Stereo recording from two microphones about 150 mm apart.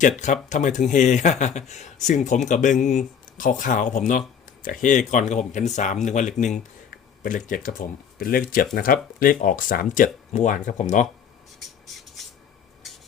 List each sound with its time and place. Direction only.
0.5 s speech: 55° left (ahead or behind)
11.9 s rub: centre (ahead or behind)